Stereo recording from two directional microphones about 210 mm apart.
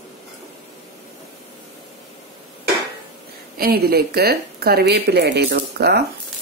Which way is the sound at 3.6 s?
45° right (ahead or behind).